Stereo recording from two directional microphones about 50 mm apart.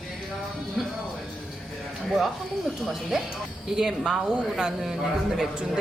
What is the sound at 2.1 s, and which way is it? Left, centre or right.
A man's voice, centre.